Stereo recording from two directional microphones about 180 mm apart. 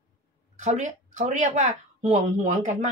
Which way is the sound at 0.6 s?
40° right (ahead or behind).